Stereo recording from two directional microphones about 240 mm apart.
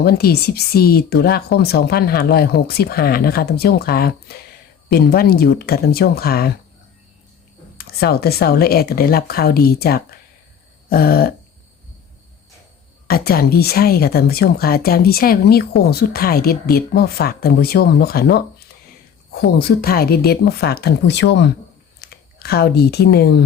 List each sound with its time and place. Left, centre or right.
0.0 s speech: left
7.8 s speech: left
10.8 s a sound: left
13.1 s speech: left